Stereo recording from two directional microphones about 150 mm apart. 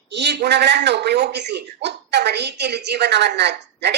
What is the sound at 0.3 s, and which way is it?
Speech, 90° right.